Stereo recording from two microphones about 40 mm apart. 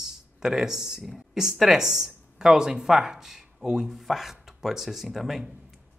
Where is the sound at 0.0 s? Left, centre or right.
Centre.